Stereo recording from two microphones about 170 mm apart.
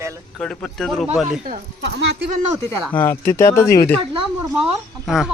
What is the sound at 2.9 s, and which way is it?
Speech, 15° left (ahead or behind).